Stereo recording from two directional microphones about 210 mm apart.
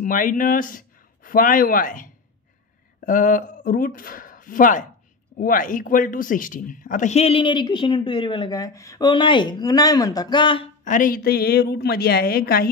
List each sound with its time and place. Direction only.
0.0 s speech: 40° left (ahead or behind); by 10.7 s 25° left (ahead or behind)
10.8 s a woman's voice: 40° left (ahead or behind)